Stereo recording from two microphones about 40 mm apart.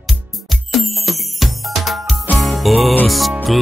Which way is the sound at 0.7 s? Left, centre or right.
Centre.